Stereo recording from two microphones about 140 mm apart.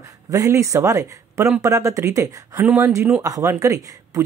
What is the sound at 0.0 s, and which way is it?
Speech, 20° right (ahead or behind).